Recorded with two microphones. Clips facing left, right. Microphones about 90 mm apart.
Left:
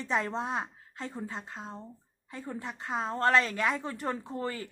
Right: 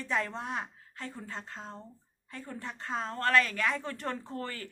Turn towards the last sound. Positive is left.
turn(degrees=15)  # may be behind; listen again after turning